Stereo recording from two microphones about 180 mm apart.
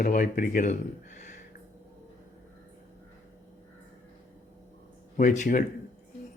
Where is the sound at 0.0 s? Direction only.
50° left (ahead or behind).